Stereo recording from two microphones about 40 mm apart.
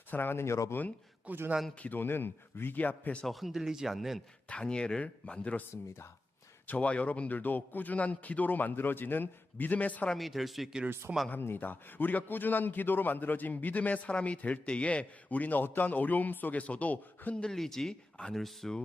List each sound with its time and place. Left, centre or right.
0.1 s speech: left
1.3 s a man's voice: right
1.8 s speech: left
2.7 s a man's voice: left
3.2 s speech: centre
4.4 s speech: left
6.7 s a man's voice: left
10.2 s speech: centre
11.1 s speech: right
11.5 s a man's voice: left
17.5 s speech: centre